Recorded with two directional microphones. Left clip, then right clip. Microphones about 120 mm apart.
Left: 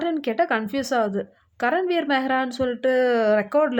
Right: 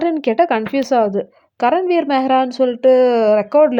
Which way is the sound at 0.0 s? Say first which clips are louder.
Right 8 dB; 40° right (ahead or behind).